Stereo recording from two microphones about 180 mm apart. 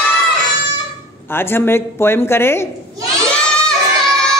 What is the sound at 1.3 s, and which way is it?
Speech, 10° left (ahead or behind).